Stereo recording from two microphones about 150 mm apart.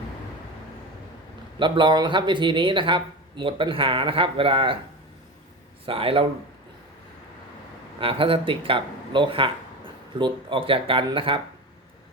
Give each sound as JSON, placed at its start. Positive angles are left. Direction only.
{"t": 1.5, "sound": "speech", "side_deg": -35}
{"t": 5.8, "sound": "speech", "side_deg": -35}
{"t": 7.9, "sound": "speech", "side_deg": -35}